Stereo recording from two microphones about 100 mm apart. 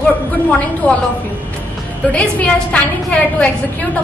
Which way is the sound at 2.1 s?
15° left (ahead or behind).